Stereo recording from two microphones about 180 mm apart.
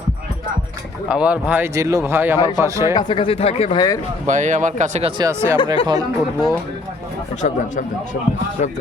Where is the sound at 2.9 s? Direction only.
25° left (ahead or behind).